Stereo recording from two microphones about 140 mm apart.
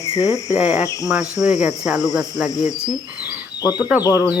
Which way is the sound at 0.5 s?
55° left (ahead or behind).